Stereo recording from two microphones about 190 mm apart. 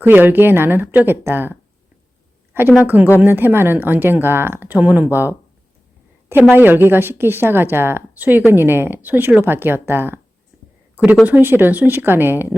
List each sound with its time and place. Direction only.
0.0 s speech: 10° right (ahead or behind)